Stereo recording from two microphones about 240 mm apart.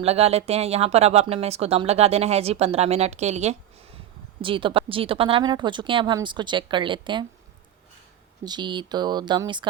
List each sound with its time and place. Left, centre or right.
0.0 s speech: right
8.4 s speech: centre